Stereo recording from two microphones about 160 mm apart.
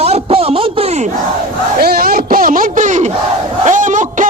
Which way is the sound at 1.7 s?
75° right (ahead or behind).